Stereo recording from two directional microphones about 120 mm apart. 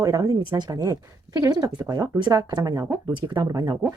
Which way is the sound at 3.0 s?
40° right (ahead or behind).